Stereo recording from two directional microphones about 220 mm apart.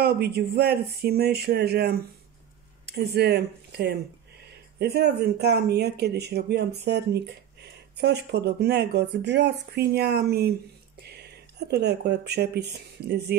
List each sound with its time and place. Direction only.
0.0 s speech: 45° right (ahead or behind)